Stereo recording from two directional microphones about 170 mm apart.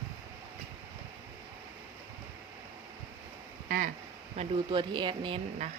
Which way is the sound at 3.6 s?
60° right (ahead or behind).